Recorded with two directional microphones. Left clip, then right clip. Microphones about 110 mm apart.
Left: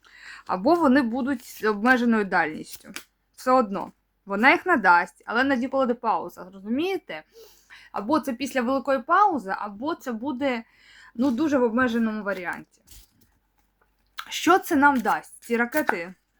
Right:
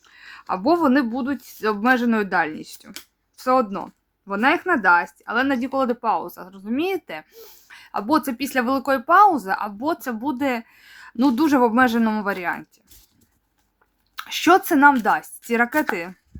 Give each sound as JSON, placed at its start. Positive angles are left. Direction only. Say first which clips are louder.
{"t": 0.0, "sound": "speech", "louder": "right 1 dB", "side_deg": -10}
{"t": 11.2, "sound": "speech", "louder": "right 5 dB", "side_deg": -65}
{"t": 14.2, "sound": "speech", "louder": "right 4 dB", "side_deg": -20}